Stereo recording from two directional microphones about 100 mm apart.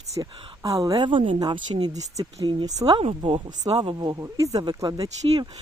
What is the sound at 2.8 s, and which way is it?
Speech, 65° right (ahead or behind).